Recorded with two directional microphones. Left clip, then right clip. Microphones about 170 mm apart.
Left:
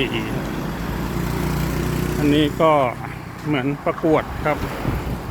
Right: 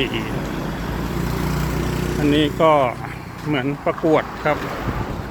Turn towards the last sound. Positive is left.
turn(degrees=5)  # may be behind; listen again after turning